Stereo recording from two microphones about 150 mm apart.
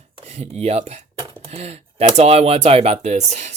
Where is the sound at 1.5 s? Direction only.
45° right (ahead or behind).